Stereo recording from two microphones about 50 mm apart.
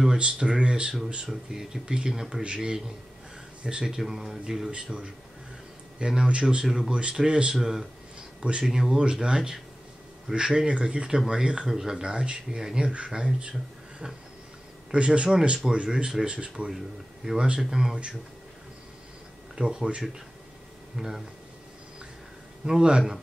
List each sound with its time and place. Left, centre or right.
0.2 s speech: centre
5.9 s speech: centre
6.9 s speech: right
7.5 s speech: centre
8.4 s speech: right
8.6 s speech: centre
16.7 s speech: centre
19.5 s speech: centre
22.7 s speech: centre